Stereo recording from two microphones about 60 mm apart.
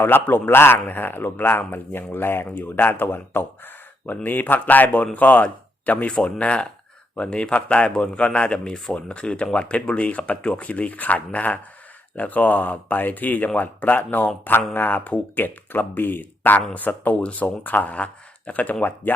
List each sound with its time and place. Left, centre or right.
0.0 s speech: left